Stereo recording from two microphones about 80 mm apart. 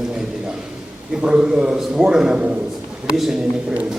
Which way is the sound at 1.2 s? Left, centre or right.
Centre.